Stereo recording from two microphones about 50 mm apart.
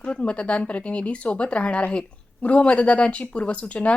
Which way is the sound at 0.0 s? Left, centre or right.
Left.